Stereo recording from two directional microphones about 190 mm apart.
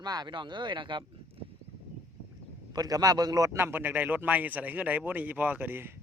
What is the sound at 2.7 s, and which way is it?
Speech, 20° right (ahead or behind).